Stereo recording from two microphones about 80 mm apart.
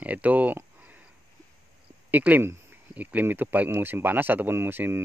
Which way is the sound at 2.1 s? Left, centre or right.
Right.